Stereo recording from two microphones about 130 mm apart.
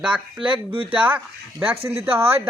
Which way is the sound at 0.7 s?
45° right (ahead or behind).